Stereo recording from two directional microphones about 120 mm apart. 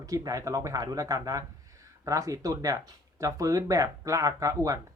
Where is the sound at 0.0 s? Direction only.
30° right (ahead or behind).